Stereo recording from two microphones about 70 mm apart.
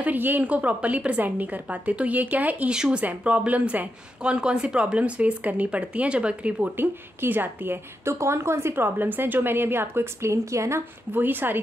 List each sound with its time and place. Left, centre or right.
0.0 s a woman's voice: right
2.7 s speech: centre
6.8 s a woman's voice: right
11.1 s a woman's voice: right